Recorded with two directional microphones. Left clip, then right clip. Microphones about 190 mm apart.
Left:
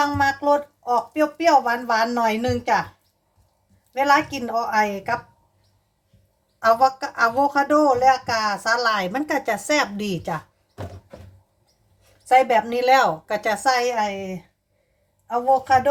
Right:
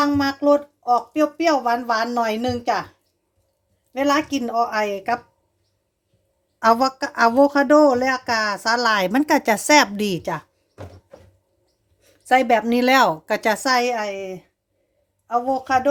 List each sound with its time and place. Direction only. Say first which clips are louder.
0.0 s speech: even; 55° right (ahead or behind)
3.9 s speech: left 2 dB; 55° right (ahead or behind)
6.6 s speech: even; 60° right (ahead or behind)
12.0 s speech: even; 60° right (ahead or behind)